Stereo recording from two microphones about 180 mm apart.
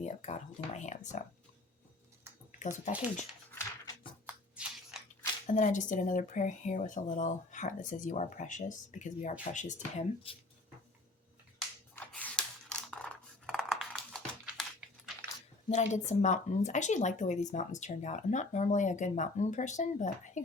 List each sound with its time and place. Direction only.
0.0 s speech: 40° left (ahead or behind)
2.6 s speech: 45° left (ahead or behind)
3.5 s a sound: 15° left (ahead or behind)
4.5 s biting: 5° right (ahead or behind)
5.5 s speech: 45° left (ahead or behind)
10.3 s speech: 30° left (ahead or behind)
11.9 s a sound: 5° left (ahead or behind)
15.7 s speech: 40° left (ahead or behind)